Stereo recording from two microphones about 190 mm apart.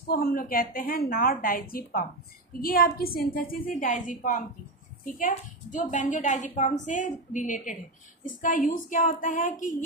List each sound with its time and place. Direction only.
0.1 s a woman's voice: 55° left (ahead or behind)